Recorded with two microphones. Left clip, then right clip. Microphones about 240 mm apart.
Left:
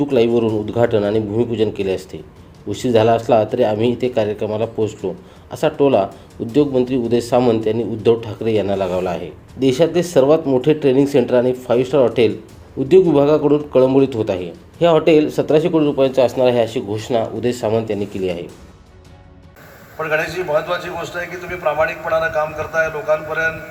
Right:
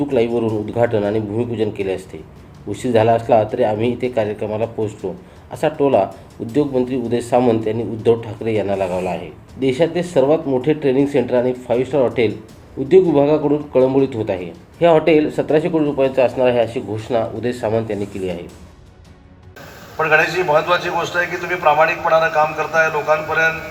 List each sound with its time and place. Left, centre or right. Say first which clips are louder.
0.0 s speech: left 2 dB; centre
20.0 s a man's voice: right 5 dB; left